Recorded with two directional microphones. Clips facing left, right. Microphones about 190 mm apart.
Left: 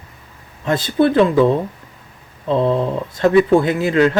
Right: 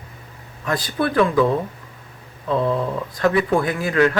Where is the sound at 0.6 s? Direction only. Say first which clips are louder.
Left 7 dB; 25° left (ahead or behind).